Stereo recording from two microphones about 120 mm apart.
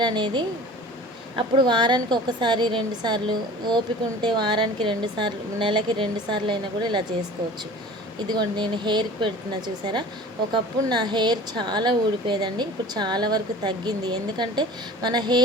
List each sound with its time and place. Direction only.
0.0 s speech: 40° right (ahead or behind)
8.3 s speech: 35° right (ahead or behind)